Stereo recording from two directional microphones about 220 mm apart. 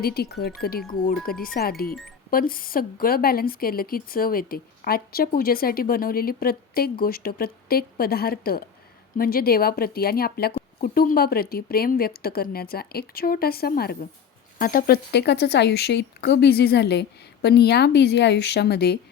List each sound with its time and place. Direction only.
0.0 s speech: 45° left (ahead or behind)